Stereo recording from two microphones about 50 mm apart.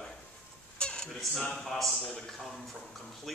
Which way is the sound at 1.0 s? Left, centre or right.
Centre.